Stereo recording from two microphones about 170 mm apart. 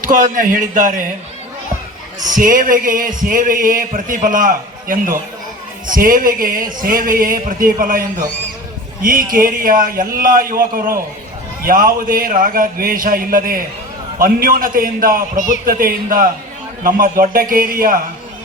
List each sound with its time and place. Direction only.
0.0 s speech: 50° right (ahead or behind)
2.2 s a man's voice: 50° right (ahead or behind)